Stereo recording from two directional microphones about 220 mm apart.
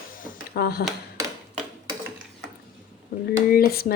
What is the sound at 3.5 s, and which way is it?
Speech, 45° left (ahead or behind).